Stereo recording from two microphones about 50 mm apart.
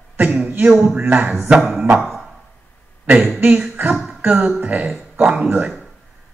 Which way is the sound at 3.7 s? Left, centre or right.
Right.